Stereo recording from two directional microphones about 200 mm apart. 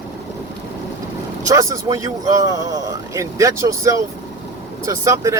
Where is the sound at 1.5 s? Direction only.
15° right (ahead or behind).